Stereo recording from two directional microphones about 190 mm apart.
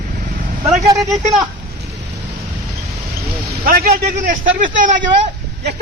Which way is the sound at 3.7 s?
50° right (ahead or behind).